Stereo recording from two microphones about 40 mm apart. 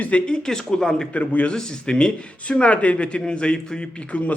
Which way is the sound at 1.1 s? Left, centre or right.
Left.